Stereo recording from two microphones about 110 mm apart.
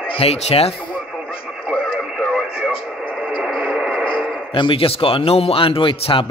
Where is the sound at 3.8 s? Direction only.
10° left (ahead or behind).